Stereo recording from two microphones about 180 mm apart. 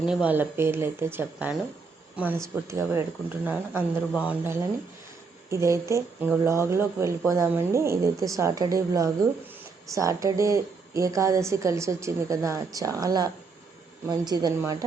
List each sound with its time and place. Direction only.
0.0 s a woman's voice: 5° right (ahead or behind)